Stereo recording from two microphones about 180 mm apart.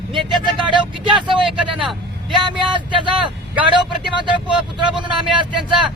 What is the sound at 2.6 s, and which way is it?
Speech, 25° right (ahead or behind).